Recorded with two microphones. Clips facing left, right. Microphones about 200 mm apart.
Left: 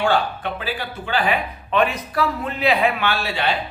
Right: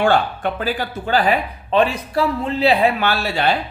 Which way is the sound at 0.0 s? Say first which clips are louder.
Right 3 dB; 45° right (ahead or behind).